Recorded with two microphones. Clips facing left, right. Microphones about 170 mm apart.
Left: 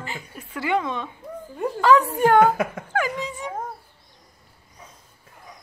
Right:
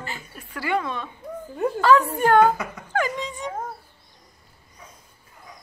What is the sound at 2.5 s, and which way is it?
Speech, 55° left (ahead or behind).